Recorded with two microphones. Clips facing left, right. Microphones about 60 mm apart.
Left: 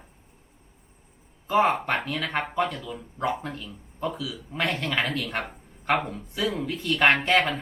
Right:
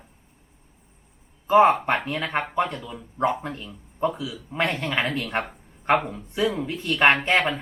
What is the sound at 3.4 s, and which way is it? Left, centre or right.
Speech, right.